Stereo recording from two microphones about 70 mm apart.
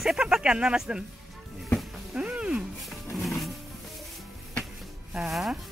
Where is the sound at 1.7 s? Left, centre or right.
Centre.